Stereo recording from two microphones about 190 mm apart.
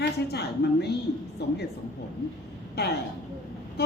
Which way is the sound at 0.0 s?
60° left (ahead or behind).